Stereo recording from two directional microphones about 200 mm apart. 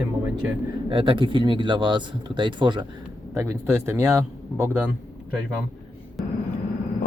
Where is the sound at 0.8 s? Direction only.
25° right (ahead or behind).